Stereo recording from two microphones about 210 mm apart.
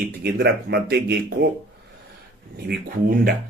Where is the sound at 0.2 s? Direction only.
50° right (ahead or behind).